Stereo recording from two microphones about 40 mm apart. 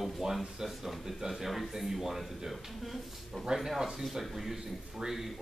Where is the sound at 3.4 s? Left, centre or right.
Centre.